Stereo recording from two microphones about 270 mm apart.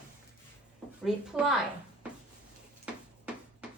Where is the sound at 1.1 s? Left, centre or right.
Centre.